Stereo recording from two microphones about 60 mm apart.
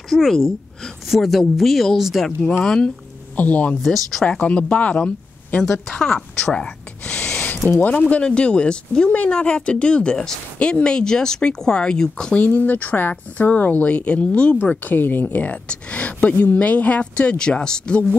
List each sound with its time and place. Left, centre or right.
0.1 s speech: centre
2.6 s speech: centre
3.3 s speech: left
3.8 s speech: centre
4.3 s speech: left
6.1 s a sound: centre
7.2 s a sound: left
7.9 s speech: left
12.4 s speech: left; by 18.0 s centre